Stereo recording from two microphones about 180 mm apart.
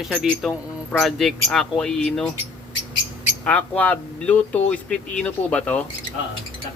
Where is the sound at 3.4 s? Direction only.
10° left (ahead or behind).